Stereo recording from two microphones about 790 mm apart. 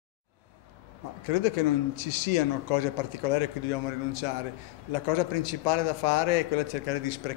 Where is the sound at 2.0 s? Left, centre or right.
Left.